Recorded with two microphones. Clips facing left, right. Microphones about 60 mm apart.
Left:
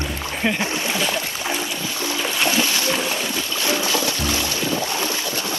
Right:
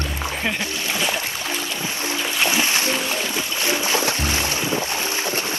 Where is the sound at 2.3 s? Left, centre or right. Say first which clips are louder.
Right 1 dB; centre.